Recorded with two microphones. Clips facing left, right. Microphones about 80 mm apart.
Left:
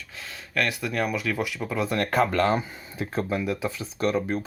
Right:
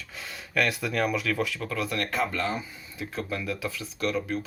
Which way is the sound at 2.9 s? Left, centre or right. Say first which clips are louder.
Left 5 dB; left.